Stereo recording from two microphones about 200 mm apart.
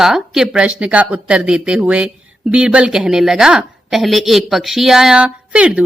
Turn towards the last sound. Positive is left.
turn(degrees=-5)  # may be behind; listen again after turning